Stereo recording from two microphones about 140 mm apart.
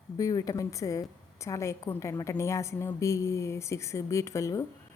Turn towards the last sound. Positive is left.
turn(degrees=20)  # may be behind; listen again after turning